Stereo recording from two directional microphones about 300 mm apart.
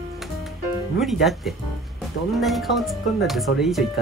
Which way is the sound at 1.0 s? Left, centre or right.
Centre.